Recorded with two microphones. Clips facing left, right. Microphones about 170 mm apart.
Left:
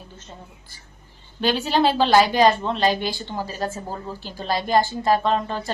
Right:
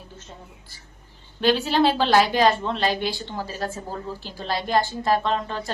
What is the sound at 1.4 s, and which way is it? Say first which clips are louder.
A woman's voice: right 1 dB; centre (ahead or behind).